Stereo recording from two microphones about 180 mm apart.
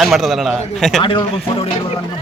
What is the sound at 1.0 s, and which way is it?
Speech, 30° left (ahead or behind).